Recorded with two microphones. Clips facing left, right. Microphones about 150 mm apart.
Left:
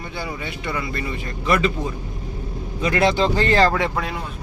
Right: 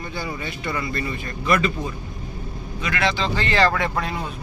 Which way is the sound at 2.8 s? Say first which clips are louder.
Left 5 dB; 40° left (ahead or behind).